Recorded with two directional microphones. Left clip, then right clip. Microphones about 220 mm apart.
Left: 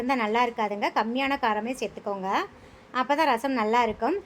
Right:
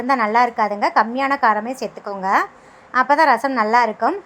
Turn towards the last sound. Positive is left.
turn(degrees=-15)  # may be behind; listen again after turning